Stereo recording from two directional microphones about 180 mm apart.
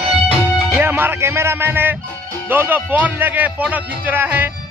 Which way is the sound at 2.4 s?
10° right (ahead or behind).